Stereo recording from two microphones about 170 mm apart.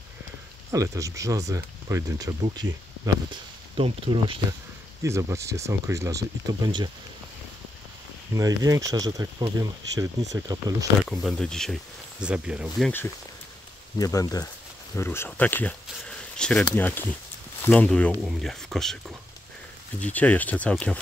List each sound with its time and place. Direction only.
0.7 s speech: 20° right (ahead or behind)
5.0 s speech: 15° right (ahead or behind)
8.4 s speech: 20° right (ahead or behind)
10.3 s speech: 20° right (ahead or behind)
11.1 s speech: 5° left (ahead or behind)
13.9 s speech: 20° left (ahead or behind)